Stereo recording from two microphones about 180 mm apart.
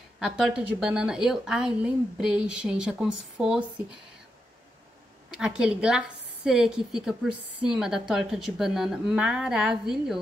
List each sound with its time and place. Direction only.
0.2 s a woman's voice: 5° right (ahead or behind)
5.4 s a woman's voice: 5° right (ahead or behind)